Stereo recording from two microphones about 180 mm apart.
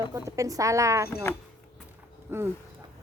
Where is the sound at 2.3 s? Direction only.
10° right (ahead or behind).